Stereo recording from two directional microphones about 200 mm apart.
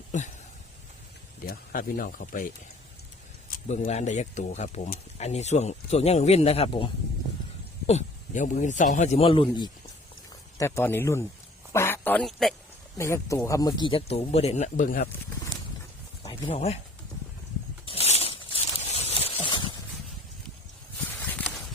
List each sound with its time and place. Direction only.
0.1 s speech: 35° left (ahead or behind)
1.5 s speech: 45° left (ahead or behind)
3.7 s speech: 35° left (ahead or behind)
10.6 s speech: 10° left (ahead or behind)
13.0 s speech: 15° left (ahead or behind); by 15.1 s 45° left (ahead or behind)
16.2 s speech: 25° left (ahead or behind)
17.8 s a sound: 30° left (ahead or behind)
21.1 s walk: 10° left (ahead or behind)